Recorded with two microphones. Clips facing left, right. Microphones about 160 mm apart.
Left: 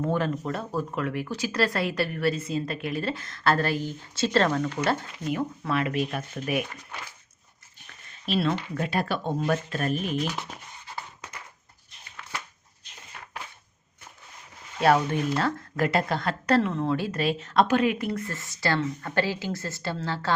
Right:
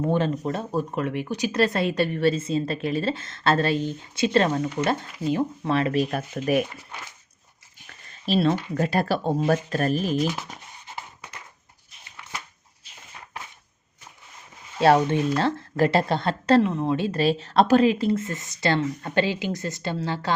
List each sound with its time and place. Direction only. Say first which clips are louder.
0.0 s speech: right 3 dB; 25° right (ahead or behind)
5.2 s speech: right 8 dB; 30° right (ahead or behind)
8.3 s speech: right 4 dB; 30° right (ahead or behind)
10.2 s speech: right 4 dB; centre (ahead or behind)
10.8 s a sound: even; 20° right (ahead or behind)
14.8 s speech: right 3 dB; 25° right (ahead or behind)
17.1 s speech: right 4 dB; 30° right (ahead or behind)